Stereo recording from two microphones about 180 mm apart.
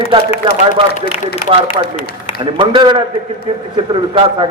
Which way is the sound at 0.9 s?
55° left (ahead or behind).